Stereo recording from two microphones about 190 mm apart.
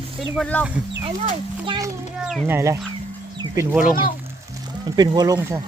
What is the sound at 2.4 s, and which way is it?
Speech, 15° right (ahead or behind).